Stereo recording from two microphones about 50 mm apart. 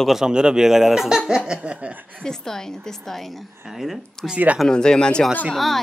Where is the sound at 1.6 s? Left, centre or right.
Right.